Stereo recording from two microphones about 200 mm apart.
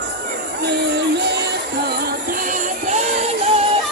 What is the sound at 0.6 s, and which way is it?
Music, 60° right (ahead or behind).